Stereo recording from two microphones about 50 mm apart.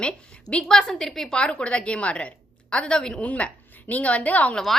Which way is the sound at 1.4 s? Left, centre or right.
Centre.